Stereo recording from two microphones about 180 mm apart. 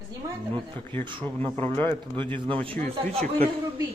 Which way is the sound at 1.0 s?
25° right (ahead or behind).